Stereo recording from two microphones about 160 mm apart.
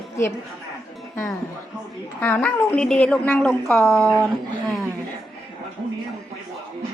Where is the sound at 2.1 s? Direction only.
10° left (ahead or behind).